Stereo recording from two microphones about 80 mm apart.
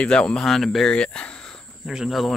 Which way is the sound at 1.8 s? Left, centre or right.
Centre.